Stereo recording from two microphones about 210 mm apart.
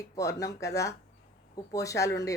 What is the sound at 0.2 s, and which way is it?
Speech, 15° left (ahead or behind).